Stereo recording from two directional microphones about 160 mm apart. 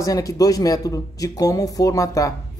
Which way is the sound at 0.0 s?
20° left (ahead or behind).